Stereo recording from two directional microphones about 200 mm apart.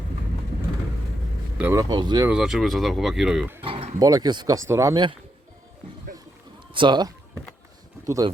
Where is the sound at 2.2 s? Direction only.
5° right (ahead or behind).